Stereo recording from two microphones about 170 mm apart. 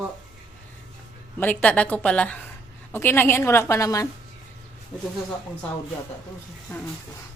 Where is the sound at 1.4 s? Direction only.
10° left (ahead or behind).